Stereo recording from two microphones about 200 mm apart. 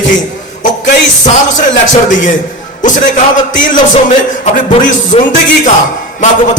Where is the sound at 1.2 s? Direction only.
40° left (ahead or behind).